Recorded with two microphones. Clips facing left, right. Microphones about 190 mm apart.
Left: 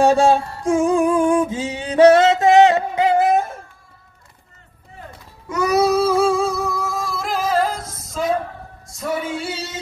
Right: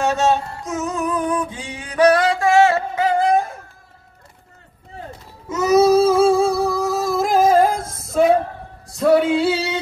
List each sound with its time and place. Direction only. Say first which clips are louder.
0.0 s a sound: left 4 dB; 30° left (ahead or behind)
5.5 s humming: right 3 dB; 25° right (ahead or behind); by 8.4 s 60° right (ahead or behind)
8.9 s male singing: right 10 dB; 65° right (ahead or behind)